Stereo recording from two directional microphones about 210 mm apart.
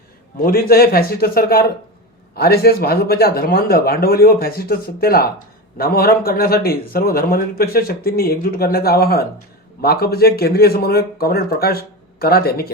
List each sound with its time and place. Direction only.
0.3 s speech: 45° left (ahead or behind)